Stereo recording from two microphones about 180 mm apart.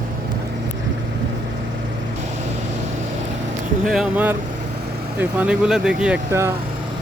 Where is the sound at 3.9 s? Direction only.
5° right (ahead or behind).